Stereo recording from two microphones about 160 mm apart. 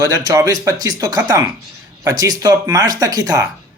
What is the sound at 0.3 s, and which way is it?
Speech, 25° right (ahead or behind).